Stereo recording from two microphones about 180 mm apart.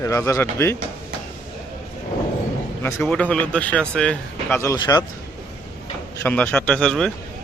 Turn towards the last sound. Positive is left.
turn(degrees=5)  # may be behind; listen again after turning